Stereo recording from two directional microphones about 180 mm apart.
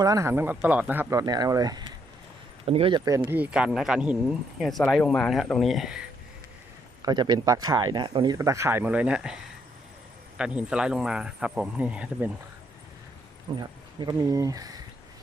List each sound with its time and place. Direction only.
0.0 s speech: 20° right (ahead or behind)
1.2 s speech: 20° right (ahead or behind); by 6.1 s 5° right (ahead or behind)
7.0 s speech: 25° right (ahead or behind); by 12.3 s 5° right (ahead or behind)
13.6 s speech: 25° right (ahead or behind)